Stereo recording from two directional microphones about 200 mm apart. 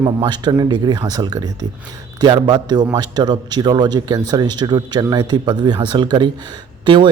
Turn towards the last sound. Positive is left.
turn(degrees=-25)  # may be behind; listen again after turning